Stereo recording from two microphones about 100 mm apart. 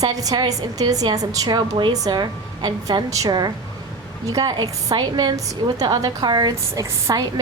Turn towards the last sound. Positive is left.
turn(degrees=-35)  # may be behind; listen again after turning